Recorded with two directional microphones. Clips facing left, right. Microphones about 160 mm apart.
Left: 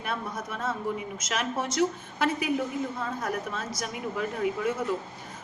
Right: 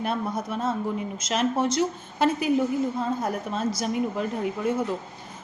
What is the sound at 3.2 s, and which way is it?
Speech, 30° right (ahead or behind).